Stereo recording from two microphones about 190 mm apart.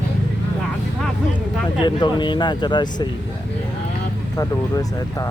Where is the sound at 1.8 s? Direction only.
25° left (ahead or behind).